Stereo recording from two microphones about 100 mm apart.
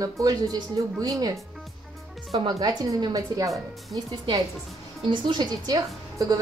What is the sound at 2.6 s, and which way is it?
Speech, 45° right (ahead or behind).